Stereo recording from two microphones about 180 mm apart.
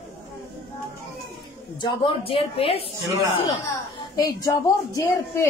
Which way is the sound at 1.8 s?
30° left (ahead or behind).